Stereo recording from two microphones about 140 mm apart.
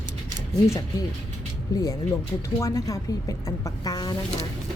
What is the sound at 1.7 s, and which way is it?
A woman's voice, 25° left (ahead or behind).